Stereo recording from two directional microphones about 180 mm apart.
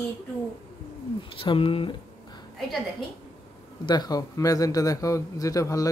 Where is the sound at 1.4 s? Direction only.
30° left (ahead or behind).